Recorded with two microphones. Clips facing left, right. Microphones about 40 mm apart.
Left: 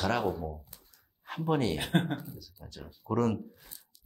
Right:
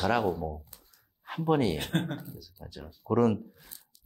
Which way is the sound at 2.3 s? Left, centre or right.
Centre.